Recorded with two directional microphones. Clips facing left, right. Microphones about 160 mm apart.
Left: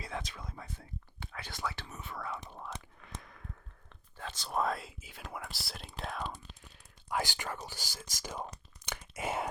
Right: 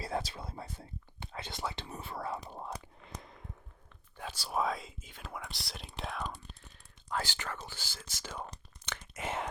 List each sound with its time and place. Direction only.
0.0 s a sound: 35° right (ahead or behind)
1.3 s whispering: 20° right (ahead or behind)
1.9 s whispering: 30° right (ahead or behind)
3.2 s sigh: 25° right (ahead or behind)
4.2 s speech: 10° right (ahead or behind)
7.1 s speech: 15° left (ahead or behind)
8.9 s whispering: 10° left (ahead or behind)